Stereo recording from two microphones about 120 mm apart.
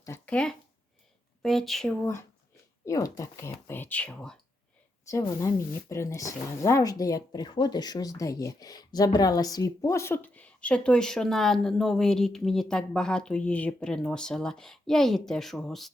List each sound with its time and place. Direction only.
0.3 s speech: 10° left (ahead or behind)
2.8 s speech: 30° left (ahead or behind); by 4.4 s 10° left (ahead or behind)
5.1 s speech: 25° left (ahead or behind); by 15.9 s centre (ahead or behind)